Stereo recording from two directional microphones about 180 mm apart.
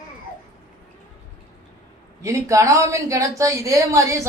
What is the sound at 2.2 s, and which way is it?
Speech, 15° right (ahead or behind).